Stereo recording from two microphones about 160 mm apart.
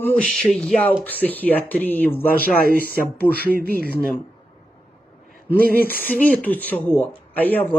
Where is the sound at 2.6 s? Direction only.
70° right (ahead or behind).